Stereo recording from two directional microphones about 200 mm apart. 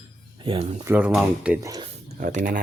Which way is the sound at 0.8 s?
10° right (ahead or behind).